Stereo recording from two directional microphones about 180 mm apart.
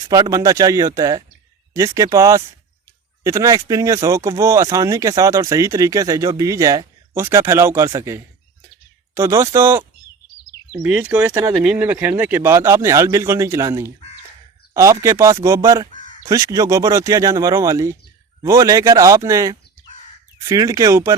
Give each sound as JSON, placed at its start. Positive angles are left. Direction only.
{"t": 0.1, "sound": "speech", "side_deg": -20}
{"t": 10.8, "sound": "speech", "side_deg": -10}